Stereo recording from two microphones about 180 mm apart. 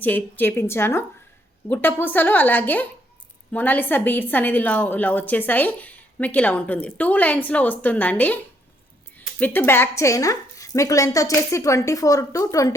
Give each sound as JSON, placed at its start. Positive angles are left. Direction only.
{"t": 0.0, "sound": "a woman's voice", "side_deg": 10}
{"t": 9.4, "sound": "a woman's voice", "side_deg": 10}